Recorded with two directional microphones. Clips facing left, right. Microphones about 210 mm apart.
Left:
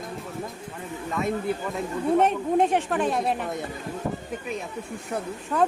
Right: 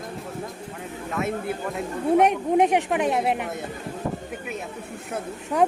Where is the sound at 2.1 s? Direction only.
15° right (ahead or behind).